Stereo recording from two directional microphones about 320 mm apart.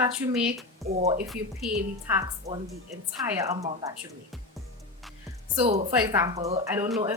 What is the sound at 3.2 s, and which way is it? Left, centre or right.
Speech, centre.